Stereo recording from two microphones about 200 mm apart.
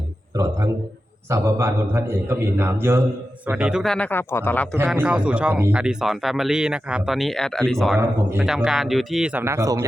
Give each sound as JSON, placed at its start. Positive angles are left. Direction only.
{"t": 0.3, "sound": "a man's voice", "side_deg": -15}
{"t": 4.9, "sound": "a man's voice", "side_deg": -5}